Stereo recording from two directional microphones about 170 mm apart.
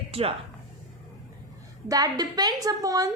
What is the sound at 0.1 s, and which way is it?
Speech, 35° right (ahead or behind).